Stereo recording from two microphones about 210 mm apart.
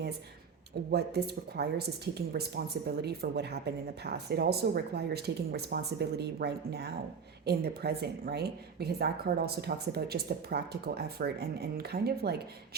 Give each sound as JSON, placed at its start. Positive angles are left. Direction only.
{"t": 0.9, "sound": "speech", "side_deg": -50}